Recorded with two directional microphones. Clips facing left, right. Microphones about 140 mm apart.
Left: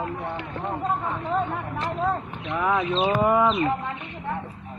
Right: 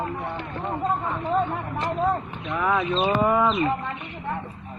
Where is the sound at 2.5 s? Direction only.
20° left (ahead or behind).